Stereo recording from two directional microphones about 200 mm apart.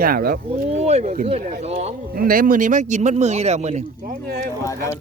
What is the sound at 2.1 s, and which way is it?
Speech, 45° right (ahead or behind).